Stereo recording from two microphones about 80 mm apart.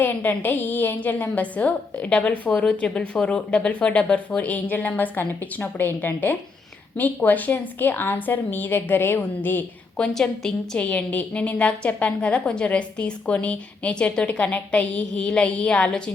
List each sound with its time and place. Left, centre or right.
0.0 s a woman's voice: left
10.0 s a woman's voice: centre
10.8 s a woman's voice: centre